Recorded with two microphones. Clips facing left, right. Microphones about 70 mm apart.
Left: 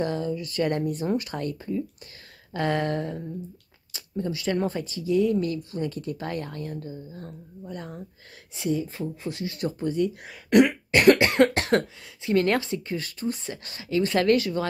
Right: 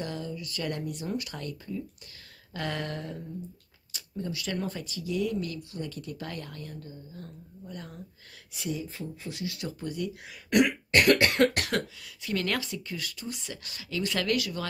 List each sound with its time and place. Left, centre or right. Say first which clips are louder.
0.0 s speech: left 8 dB; left
7.2 s speech: left 5 dB; left
10.9 s speech: left 5 dB; left